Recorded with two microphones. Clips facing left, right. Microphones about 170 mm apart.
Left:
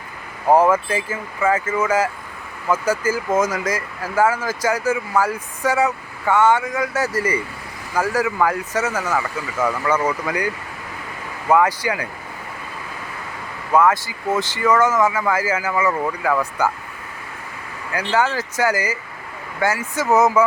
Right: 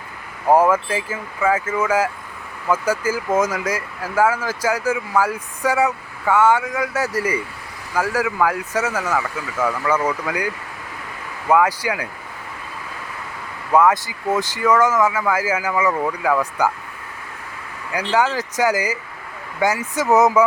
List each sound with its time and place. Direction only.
0.4 s speech: 5° right (ahead or behind)
9.1 s speech: centre (ahead or behind)
13.7 s speech: 15° right (ahead or behind)
15.9 s speech: centre (ahead or behind)
17.9 s speech: 15° right (ahead or behind)